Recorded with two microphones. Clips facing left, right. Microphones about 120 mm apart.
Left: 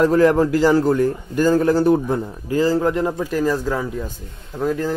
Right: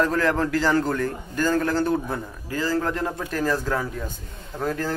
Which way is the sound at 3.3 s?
5° left (ahead or behind).